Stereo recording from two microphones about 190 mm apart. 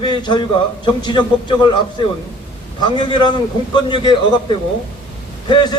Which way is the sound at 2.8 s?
25° left (ahead or behind).